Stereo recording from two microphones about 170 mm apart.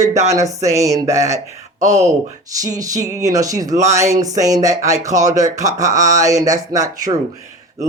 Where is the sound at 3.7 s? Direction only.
40° right (ahead or behind).